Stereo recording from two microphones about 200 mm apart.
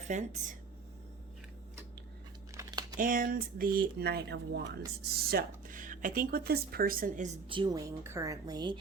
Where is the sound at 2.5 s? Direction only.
15° right (ahead or behind).